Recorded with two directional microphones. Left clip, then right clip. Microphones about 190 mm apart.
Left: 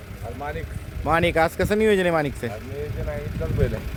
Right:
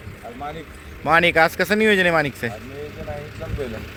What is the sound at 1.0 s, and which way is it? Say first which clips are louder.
Speech: right 4 dB; centre (ahead or behind).